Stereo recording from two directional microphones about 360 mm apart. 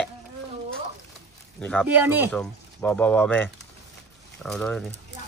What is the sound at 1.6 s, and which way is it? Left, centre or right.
Speech, centre.